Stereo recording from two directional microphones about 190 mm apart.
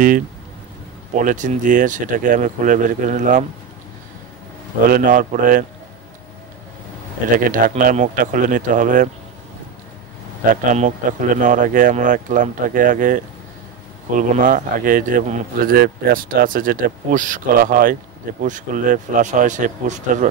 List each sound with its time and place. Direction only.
1.1 s speech: 40° right (ahead or behind)
4.9 s speech: 45° right (ahead or behind)
7.3 s speech: 45° right (ahead or behind)
10.5 s speech: 45° right (ahead or behind)